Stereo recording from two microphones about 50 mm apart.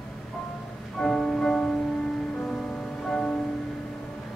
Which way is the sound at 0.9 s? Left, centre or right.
Centre.